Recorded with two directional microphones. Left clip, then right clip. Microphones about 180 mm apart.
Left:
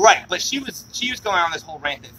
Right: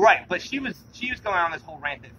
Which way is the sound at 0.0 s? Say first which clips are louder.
Left 4 dB; 10° right (ahead or behind).